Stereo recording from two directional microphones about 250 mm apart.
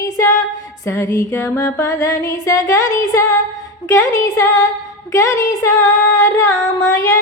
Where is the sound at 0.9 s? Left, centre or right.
Centre.